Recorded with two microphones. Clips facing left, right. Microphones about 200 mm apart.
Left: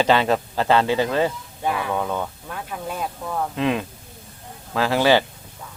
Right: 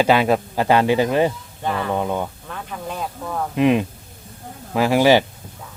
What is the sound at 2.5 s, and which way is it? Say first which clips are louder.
Speech: even; 5° left (ahead or behind).